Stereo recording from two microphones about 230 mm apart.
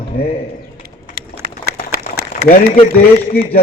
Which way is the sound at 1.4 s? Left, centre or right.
Right.